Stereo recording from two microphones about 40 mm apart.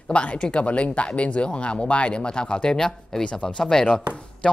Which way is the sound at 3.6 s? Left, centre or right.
Centre.